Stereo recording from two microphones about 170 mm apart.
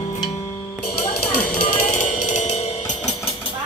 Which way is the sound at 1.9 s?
45° left (ahead or behind).